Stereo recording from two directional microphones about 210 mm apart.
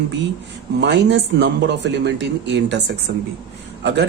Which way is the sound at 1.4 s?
55° right (ahead or behind).